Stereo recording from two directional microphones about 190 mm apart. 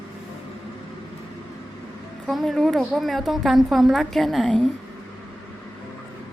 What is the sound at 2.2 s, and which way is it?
A woman's voice, centre (ahead or behind).